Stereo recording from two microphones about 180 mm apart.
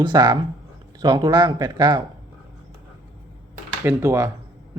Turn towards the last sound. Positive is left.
turn(degrees=-15)  # may be behind; listen again after turning